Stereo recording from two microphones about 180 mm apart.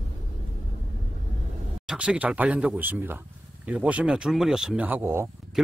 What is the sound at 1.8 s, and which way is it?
Speech, 5° right (ahead or behind).